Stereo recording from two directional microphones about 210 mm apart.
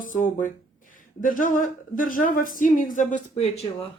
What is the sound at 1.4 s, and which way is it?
Speech, 40° left (ahead or behind).